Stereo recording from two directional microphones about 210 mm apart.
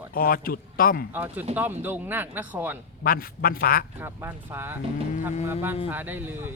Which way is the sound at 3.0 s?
45° left (ahead or behind).